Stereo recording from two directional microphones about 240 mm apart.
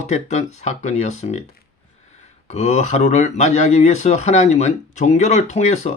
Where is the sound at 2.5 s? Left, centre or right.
Left.